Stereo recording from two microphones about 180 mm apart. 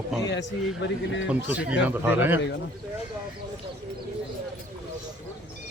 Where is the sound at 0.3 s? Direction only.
85° left.